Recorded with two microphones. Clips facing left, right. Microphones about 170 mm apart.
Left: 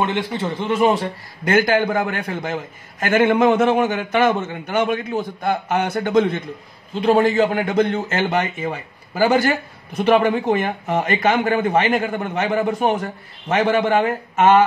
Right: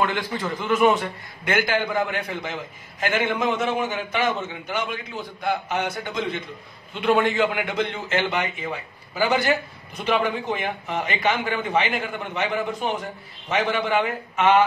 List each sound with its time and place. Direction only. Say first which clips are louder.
0.0 s a man's voice: left 3 dB; 25° left (ahead or behind); by 6.4 s 55° left (ahead or behind)
6.9 s a man's voice: left 5 dB; 35° left (ahead or behind)